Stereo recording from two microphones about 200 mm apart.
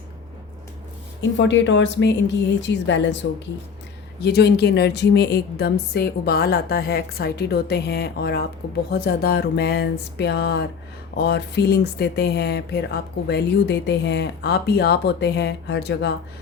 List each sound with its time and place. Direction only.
1.4 s a woman's voice: 65° left (ahead or behind)